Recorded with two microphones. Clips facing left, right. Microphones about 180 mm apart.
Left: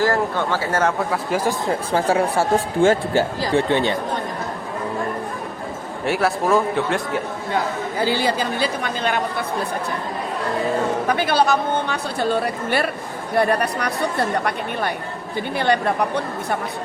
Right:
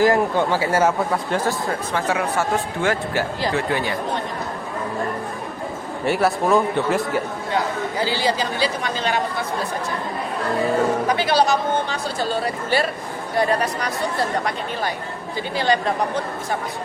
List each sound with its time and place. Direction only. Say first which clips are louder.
0.0 s speech: right 3 dB; 15° right (ahead or behind)
1.1 s speech: left 1 dB; 10° left (ahead or behind)
1.9 s speech: left 5 dB; 30° left (ahead or behind)
6.1 s a man's voice: right 1 dB; centre (ahead or behind)
8.0 s speech: left 2 dB; 55° left (ahead or behind)
11.1 s speech: left 3 dB; 55° left (ahead or behind)